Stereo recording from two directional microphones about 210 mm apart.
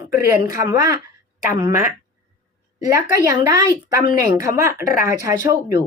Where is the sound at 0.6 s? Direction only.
15° right (ahead or behind).